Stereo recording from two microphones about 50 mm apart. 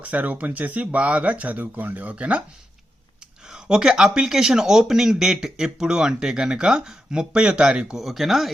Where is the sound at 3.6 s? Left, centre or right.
Centre.